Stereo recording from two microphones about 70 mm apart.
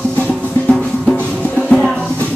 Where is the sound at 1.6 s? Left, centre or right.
Centre.